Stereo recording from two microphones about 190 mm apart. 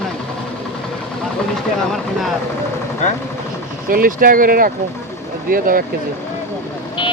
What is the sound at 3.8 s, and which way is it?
Speech, 50° right (ahead or behind).